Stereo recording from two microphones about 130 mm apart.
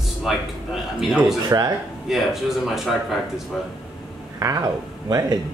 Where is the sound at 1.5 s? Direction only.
25° right (ahead or behind).